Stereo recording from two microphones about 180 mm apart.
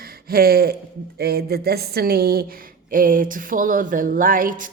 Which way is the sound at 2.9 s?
50° right (ahead or behind).